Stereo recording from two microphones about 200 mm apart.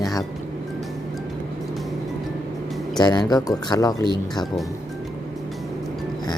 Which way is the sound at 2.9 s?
20° left (ahead or behind).